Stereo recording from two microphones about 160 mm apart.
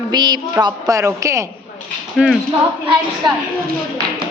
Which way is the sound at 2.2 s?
5° right (ahead or behind).